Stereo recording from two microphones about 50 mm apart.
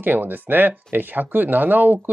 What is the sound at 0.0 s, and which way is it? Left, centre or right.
Speech, right.